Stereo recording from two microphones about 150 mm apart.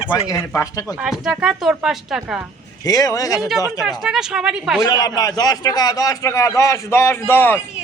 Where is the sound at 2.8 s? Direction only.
25° left (ahead or behind).